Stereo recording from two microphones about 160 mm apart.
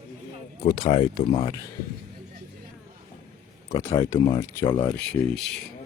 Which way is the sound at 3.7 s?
20° left (ahead or behind).